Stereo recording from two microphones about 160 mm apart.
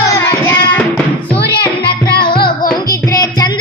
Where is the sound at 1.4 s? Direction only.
80° left.